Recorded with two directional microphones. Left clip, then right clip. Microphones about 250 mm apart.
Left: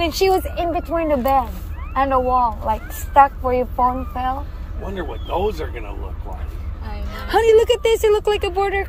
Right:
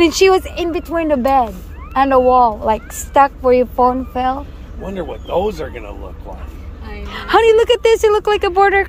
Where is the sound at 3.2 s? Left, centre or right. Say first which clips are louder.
Right 7 dB; right.